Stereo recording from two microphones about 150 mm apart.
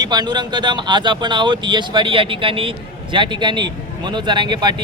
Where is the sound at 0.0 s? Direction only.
30° right (ahead or behind).